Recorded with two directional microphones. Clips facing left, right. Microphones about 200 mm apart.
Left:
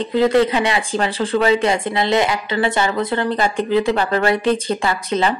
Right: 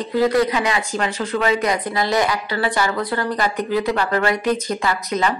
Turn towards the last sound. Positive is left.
turn(degrees=30)  # may be behind; listen again after turning